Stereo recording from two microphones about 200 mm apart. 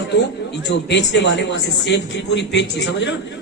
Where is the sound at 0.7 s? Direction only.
60° left (ahead or behind).